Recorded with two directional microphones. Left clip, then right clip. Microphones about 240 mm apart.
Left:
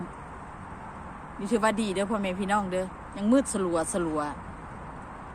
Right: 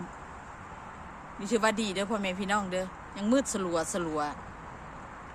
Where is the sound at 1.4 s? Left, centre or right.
Centre.